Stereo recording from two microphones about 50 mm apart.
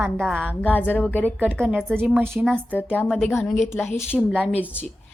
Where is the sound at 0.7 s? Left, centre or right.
Left.